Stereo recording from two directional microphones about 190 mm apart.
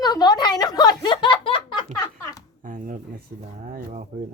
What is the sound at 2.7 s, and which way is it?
Speech, 45° right (ahead or behind).